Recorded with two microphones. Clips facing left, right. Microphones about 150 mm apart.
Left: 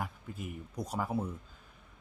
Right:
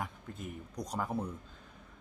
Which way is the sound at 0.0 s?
5° left (ahead or behind).